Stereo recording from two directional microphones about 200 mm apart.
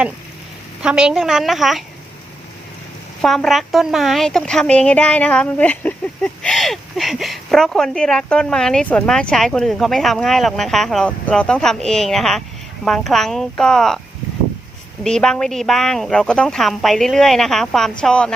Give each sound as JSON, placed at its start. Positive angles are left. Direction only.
{"t": 0.8, "sound": "a woman's voice", "side_deg": -5}
{"t": 3.2, "sound": "a woman's voice", "side_deg": 0}
{"t": 15.0, "sound": "a woman's voice", "side_deg": 5}